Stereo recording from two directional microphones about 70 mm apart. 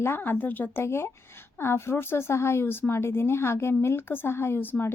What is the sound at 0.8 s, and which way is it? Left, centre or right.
Speech, left.